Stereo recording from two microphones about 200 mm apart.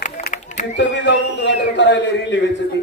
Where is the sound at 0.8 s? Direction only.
65° left (ahead or behind).